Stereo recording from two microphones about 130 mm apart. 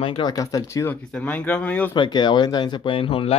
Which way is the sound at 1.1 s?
10° left (ahead or behind).